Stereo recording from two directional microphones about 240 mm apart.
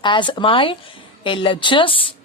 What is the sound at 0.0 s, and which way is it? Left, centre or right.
A woman's voice, centre.